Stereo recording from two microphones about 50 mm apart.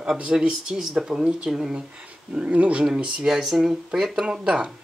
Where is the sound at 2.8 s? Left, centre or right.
Centre.